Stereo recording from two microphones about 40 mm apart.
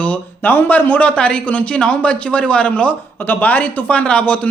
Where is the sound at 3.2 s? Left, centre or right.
Left.